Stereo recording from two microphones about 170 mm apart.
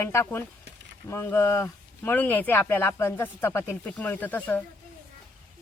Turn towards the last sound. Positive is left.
turn(degrees=10)  # may be behind; listen again after turning